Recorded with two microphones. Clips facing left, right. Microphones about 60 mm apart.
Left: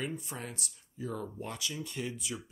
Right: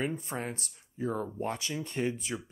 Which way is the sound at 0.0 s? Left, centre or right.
Right.